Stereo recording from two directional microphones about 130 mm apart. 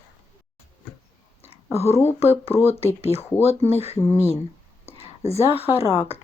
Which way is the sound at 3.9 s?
20° left (ahead or behind).